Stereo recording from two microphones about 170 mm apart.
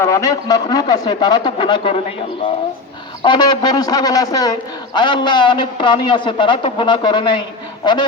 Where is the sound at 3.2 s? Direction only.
25° left (ahead or behind).